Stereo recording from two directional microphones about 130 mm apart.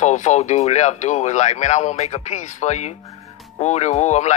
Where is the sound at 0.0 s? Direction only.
60° left (ahead or behind).